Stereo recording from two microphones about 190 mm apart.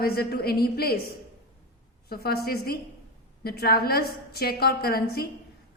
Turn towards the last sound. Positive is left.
turn(degrees=55)  # may be behind; listen again after turning